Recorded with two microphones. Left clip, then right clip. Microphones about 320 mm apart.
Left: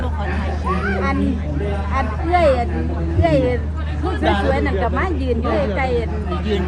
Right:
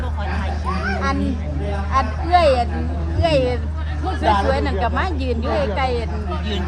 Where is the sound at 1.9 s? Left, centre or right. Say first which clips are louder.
Right 3 dB; right.